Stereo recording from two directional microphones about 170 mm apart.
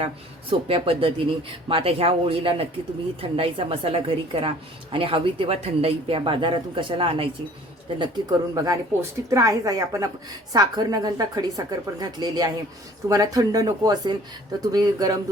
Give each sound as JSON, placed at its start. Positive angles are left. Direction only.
{"t": 0.7, "sound": "a woman's voice", "side_deg": -30}